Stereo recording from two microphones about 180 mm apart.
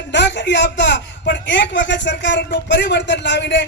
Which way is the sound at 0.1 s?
75° left (ahead or behind).